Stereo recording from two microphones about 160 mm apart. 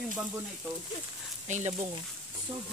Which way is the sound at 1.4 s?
45° right (ahead or behind).